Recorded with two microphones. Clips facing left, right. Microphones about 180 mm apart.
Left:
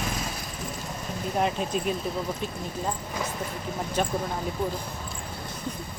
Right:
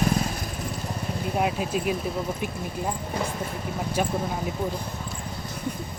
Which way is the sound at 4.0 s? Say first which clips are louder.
Right 1 dB; 10° right (ahead or behind).